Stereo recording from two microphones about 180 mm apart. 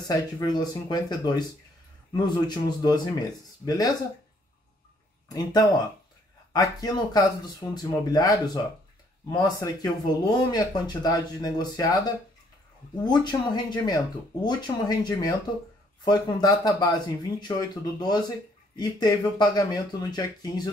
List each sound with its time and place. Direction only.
0.1 s speech: 20° left (ahead or behind)
5.3 s speech: 20° left (ahead or behind)